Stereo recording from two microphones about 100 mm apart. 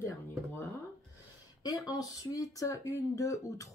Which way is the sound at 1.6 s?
40° left (ahead or behind).